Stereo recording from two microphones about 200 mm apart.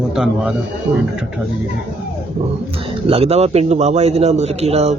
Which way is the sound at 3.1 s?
30° right (ahead or behind).